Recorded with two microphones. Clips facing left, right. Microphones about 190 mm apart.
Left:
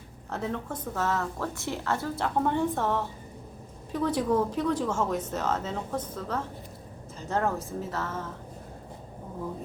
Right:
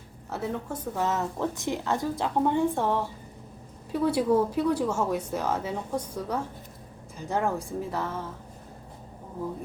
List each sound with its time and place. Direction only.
0.3 s speech: 10° right (ahead or behind)